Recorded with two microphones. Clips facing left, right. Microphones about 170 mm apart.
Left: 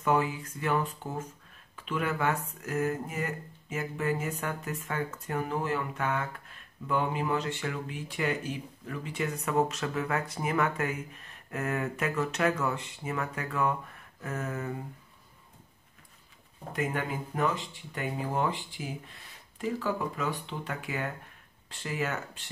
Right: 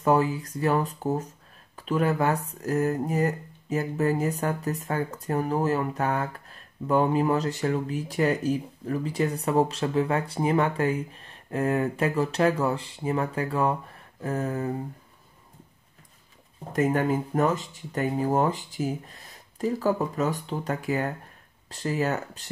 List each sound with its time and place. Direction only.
0.0 s speech: 40° right (ahead or behind)
16.7 s speech: 40° right (ahead or behind)